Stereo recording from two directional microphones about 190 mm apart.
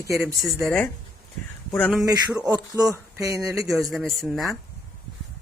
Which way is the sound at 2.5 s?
20° right (ahead or behind).